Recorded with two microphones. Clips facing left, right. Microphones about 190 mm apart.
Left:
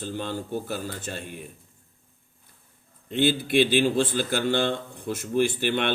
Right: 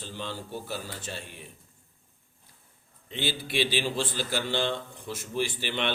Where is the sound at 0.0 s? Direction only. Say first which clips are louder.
Left 6 dB; 50° left (ahead or behind).